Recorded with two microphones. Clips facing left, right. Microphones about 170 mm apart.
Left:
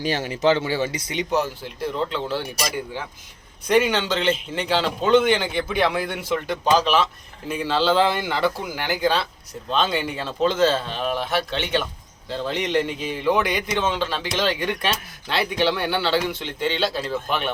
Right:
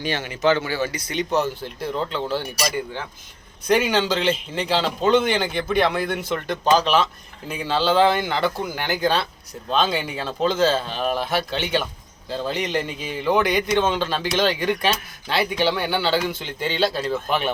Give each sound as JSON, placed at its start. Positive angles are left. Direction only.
{"t": 0.0, "sound": "speech", "side_deg": 40}
{"t": 3.7, "sound": "a man's voice", "side_deg": 0}